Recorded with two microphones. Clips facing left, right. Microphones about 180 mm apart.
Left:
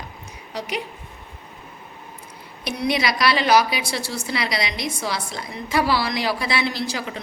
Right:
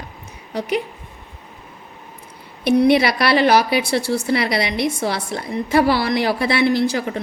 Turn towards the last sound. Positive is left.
turn(degrees=-55)  # may be behind; listen again after turning